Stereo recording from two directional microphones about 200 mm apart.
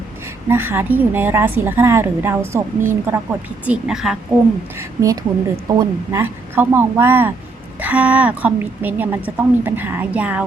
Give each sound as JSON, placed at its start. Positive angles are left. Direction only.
{"t": 0.4, "sound": "a woman's voice", "side_deg": -10}
{"t": 4.8, "sound": "a woman's voice", "side_deg": -15}